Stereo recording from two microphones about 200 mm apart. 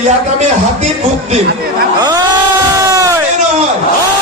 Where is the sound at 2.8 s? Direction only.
15° right (ahead or behind).